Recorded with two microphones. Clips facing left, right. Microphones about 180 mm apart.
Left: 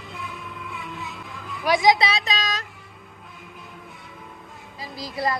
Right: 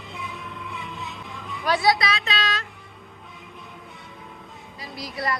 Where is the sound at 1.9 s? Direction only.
30° left (ahead or behind).